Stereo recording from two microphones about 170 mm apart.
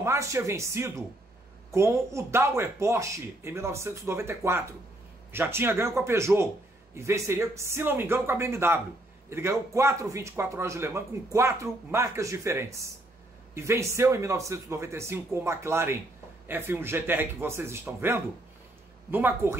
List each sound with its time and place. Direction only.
0.0 s a man's voice: 15° right (ahead or behind)